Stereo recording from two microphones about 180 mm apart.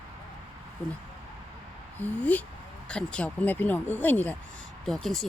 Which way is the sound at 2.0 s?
10° left (ahead or behind).